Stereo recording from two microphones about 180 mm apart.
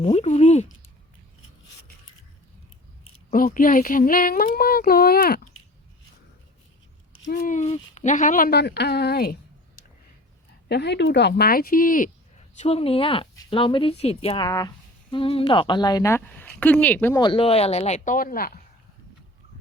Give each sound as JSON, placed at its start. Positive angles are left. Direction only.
{"t": 0.0, "sound": "a sound", "side_deg": 40}
{"t": 3.3, "sound": "speech", "side_deg": 50}
{"t": 7.3, "sound": "speech", "side_deg": 45}
{"t": 10.7, "sound": "a woman's voice", "side_deg": 70}
{"t": 12.5, "sound": "speech", "side_deg": 35}
{"t": 17.2, "sound": "speech", "side_deg": 30}